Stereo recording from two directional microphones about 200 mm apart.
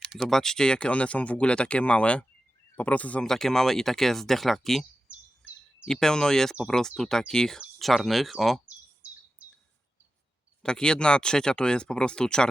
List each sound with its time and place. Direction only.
0.1 s speech: centre (ahead or behind)
9.0 s bird: 5° right (ahead or behind)
10.6 s speech: 5° left (ahead or behind)